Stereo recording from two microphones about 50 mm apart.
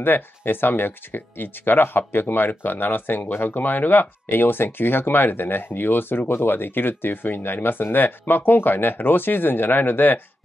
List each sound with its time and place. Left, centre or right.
0.0 s speech: left